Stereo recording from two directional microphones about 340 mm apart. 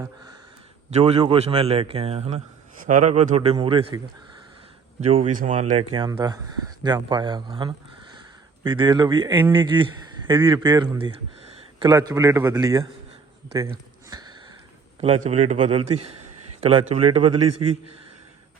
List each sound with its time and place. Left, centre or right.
0.9 s a man's voice: centre
14.1 s sniff: centre
15.3 s a man's voice: centre
17.5 s a man's voice: right